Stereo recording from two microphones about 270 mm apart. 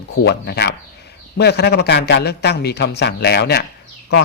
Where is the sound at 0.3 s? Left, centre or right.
Left.